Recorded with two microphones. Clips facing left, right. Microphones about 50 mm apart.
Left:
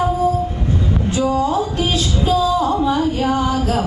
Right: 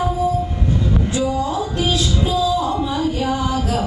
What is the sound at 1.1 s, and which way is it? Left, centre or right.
Music, left.